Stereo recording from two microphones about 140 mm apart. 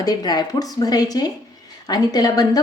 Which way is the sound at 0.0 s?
30° left (ahead or behind).